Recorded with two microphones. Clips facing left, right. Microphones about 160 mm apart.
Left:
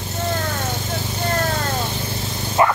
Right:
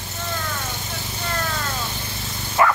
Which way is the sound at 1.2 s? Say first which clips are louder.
Left 5 dB; 40° left (ahead or behind).